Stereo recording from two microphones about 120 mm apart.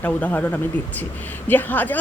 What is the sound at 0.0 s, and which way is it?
Speech, 15° left (ahead or behind).